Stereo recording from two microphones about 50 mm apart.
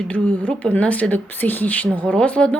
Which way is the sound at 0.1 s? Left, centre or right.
Left.